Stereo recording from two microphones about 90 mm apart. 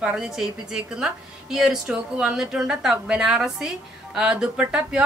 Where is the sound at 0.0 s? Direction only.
5° right (ahead or behind).